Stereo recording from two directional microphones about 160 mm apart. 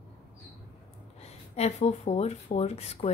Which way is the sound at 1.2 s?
40° left (ahead or behind).